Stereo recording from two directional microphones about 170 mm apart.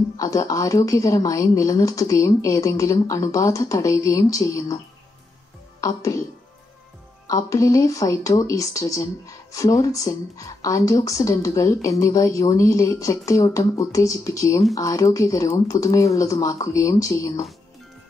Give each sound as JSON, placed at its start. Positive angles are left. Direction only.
{"t": 0.2, "sound": "speech", "side_deg": 20}
{"t": 5.8, "sound": "speech", "side_deg": 20}
{"t": 7.2, "sound": "speech", "side_deg": 20}